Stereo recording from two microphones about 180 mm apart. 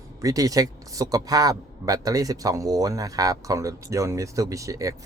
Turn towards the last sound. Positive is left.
turn(degrees=-20)  # may be behind; listen again after turning